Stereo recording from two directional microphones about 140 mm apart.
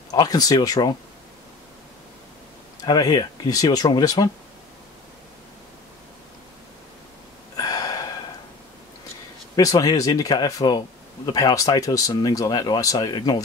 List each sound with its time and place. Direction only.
0.1 s speech: 25° left (ahead or behind)
2.8 s speech: 30° left (ahead or behind)
7.5 s gasp: 25° left (ahead or behind)
9.6 s speech: 25° left (ahead or behind)